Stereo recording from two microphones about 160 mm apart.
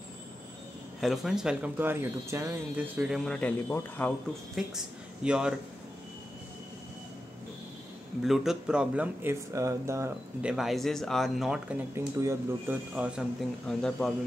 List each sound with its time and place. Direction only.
1.0 s speech: centre (ahead or behind)
3.3 s a man's voice: 10° left (ahead or behind)
4.6 s speech: 5° right (ahead or behind)
8.2 s speech: centre (ahead or behind); by 10.1 s 20° right (ahead or behind)
10.4 s speech: centre (ahead or behind)
11.9 s speech: 15° right (ahead or behind)
13.7 s speech: 5° left (ahead or behind)